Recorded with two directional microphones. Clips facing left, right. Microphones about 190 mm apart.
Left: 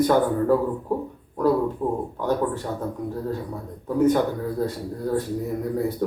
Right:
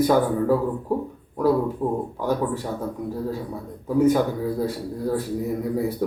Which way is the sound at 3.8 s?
10° right (ahead or behind).